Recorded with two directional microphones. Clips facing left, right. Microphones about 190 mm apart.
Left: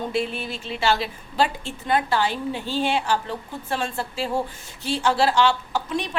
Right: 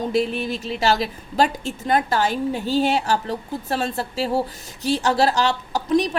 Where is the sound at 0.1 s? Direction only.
40° right (ahead or behind).